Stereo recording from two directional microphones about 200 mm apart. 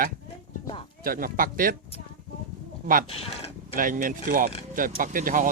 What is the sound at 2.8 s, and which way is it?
Speech, 45° right (ahead or behind).